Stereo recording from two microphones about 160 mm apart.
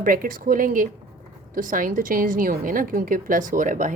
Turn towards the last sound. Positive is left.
turn(degrees=-55)  # may be behind; listen again after turning